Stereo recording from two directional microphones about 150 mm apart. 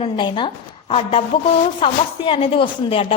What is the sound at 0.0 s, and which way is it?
A woman's voice, 35° left (ahead or behind).